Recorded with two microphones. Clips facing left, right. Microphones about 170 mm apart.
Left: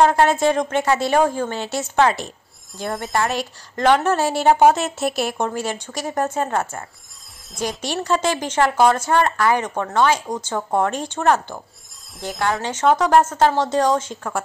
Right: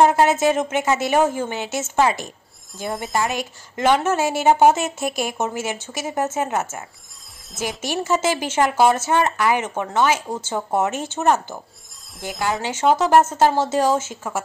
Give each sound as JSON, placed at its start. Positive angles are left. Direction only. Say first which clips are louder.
{"t": 0.0, "sound": "speech", "louder": "even", "side_deg": -10}
{"t": 0.8, "sound": "a woman's voice", "louder": "left 1 dB", "side_deg": -20}
{"t": 1.1, "sound": "speech", "louder": "even", "side_deg": -5}
{"t": 1.4, "sound": "a woman's voice", "louder": "left 1 dB", "side_deg": -20}
{"t": 2.0, "sound": "speech", "louder": "left 2 dB", "side_deg": -5}
{"t": 6.2, "sound": "a woman's voice", "louder": "left 1 dB", "side_deg": -20}
{"t": 7.5, "sound": "speech", "louder": "even", "side_deg": -5}